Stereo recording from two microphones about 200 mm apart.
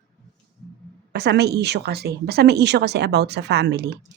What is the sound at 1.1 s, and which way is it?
A woman's voice, 55° right (ahead or behind).